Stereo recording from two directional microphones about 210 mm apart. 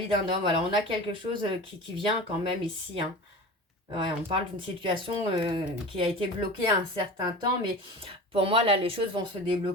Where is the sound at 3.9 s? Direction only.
25° right (ahead or behind).